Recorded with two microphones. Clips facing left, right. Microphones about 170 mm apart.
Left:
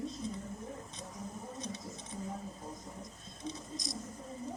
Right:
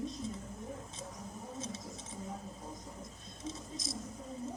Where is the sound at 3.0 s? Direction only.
Centre (ahead or behind).